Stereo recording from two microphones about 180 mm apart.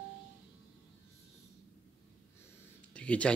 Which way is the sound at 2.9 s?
5° left (ahead or behind).